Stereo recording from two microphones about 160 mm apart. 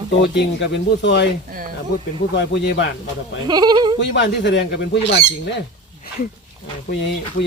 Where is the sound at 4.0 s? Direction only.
90° left.